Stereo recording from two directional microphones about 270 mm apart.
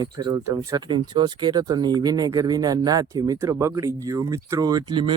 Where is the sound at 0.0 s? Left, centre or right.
Centre.